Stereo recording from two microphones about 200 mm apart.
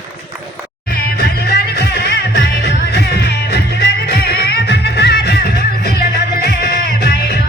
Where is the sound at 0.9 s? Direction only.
50° left (ahead or behind).